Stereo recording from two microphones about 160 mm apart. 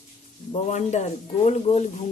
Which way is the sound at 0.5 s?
45° left (ahead or behind).